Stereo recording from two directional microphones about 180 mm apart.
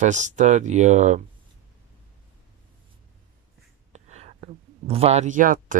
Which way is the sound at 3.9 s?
40° right (ahead or behind).